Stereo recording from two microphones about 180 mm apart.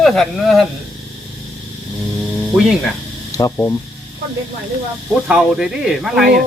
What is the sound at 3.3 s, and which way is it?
Speech, 20° left (ahead or behind).